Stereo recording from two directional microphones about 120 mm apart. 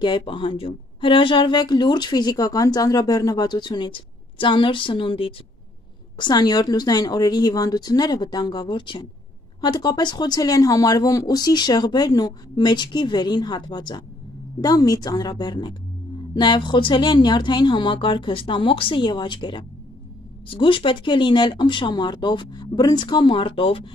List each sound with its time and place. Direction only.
0.0 s a woman's voice: 45° left (ahead or behind)